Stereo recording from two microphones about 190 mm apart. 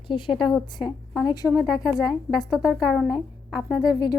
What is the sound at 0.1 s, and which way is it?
Speech, 25° left (ahead or behind).